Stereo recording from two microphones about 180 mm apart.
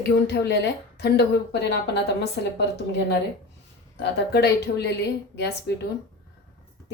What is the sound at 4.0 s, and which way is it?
Speech, 70° left (ahead or behind).